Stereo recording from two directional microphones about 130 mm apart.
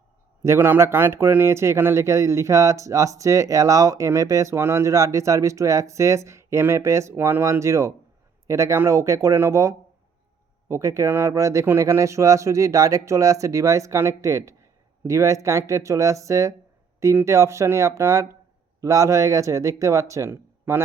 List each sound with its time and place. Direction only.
0.4 s speech: 20° right (ahead or behind)